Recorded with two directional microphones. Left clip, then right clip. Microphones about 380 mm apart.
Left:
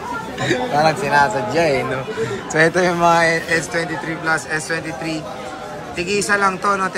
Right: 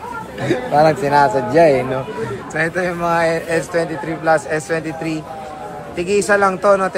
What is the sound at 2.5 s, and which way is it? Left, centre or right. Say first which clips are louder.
Speech: left 4 dB; centre.